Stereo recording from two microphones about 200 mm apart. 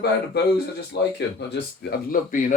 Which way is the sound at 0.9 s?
55° left (ahead or behind).